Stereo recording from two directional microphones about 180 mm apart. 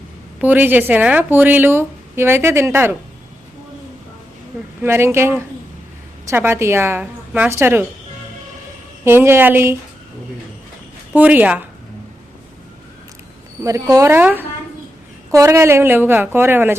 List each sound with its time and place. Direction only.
0.3 s speech: 10° right (ahead or behind)
4.8 s speech: 15° right (ahead or behind)
9.0 s speech: 15° right (ahead or behind)
11.1 s speech: 10° right (ahead or behind)
13.6 s speech: 15° right (ahead or behind)